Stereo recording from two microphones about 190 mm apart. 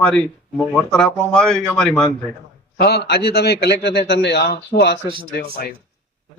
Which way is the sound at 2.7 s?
55° left (ahead or behind).